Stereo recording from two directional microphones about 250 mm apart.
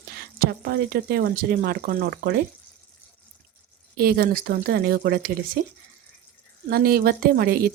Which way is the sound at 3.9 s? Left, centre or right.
Right.